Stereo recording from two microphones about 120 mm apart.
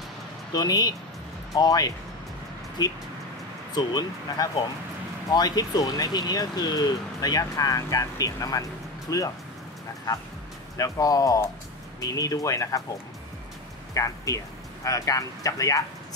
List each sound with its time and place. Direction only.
0.6 s speech: 35° left (ahead or behind)
3.7 s speech: 35° left (ahead or behind)
10.8 s speech: 30° left (ahead or behind)
13.9 s speech: 25° left (ahead or behind)